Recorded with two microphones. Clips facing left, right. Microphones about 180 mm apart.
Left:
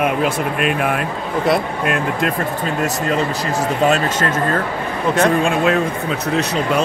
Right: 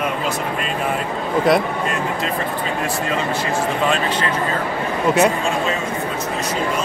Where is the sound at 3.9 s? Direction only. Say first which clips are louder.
Left 3 dB; 45° left (ahead or behind).